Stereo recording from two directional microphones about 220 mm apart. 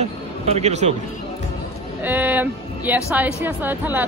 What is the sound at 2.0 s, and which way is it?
A woman's voice, 10° right (ahead or behind).